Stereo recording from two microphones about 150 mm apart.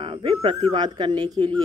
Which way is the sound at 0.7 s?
30° right (ahead or behind).